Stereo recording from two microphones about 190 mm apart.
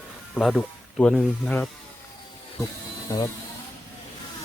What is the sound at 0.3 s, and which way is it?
Speech, centre (ahead or behind).